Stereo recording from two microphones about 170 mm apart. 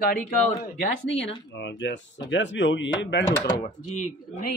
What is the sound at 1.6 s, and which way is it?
Speech, 90° left.